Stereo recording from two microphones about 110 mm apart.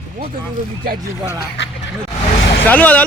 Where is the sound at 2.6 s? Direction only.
15° left (ahead or behind).